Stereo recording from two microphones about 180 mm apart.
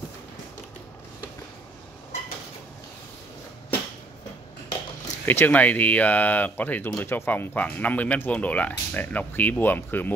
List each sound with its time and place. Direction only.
5.2 s speech: 10° left (ahead or behind)